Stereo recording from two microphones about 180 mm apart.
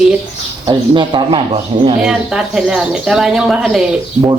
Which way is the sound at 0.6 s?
25° right (ahead or behind).